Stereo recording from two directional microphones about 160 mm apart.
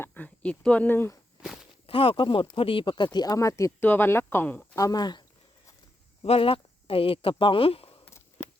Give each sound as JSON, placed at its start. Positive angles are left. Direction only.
{"t": 0.0, "sound": "speech", "side_deg": 10}
{"t": 1.9, "sound": "speech", "side_deg": 35}
{"t": 6.2, "sound": "speech", "side_deg": 35}
{"t": 8.0, "sound": "a sound", "side_deg": 15}